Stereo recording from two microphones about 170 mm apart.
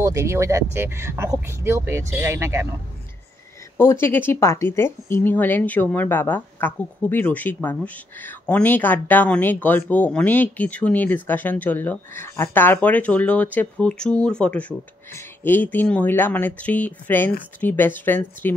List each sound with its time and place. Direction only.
0.0 s speech: 20° right (ahead or behind)
3.7 s speech: 15° left (ahead or behind)